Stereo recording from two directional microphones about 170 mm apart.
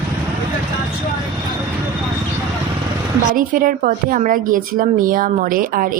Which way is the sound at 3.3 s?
55° right (ahead or behind).